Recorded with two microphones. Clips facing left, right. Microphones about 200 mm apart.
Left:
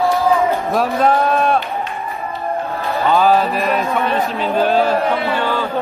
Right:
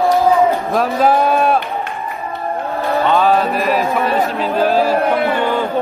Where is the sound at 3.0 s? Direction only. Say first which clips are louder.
Left 1 dB; centre (ahead or behind).